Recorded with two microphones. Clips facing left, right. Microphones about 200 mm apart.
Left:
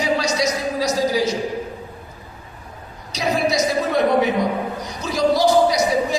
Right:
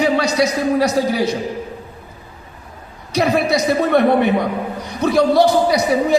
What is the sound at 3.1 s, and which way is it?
A man's voice, 60° right (ahead or behind).